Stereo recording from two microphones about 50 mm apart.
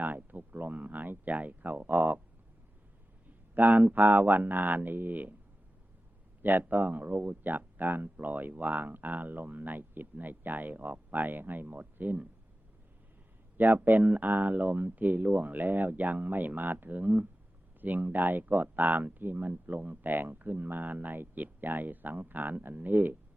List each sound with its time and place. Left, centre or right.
0.0 s speech: right
3.5 s speech: right
6.4 s speech: right
13.6 s speech: right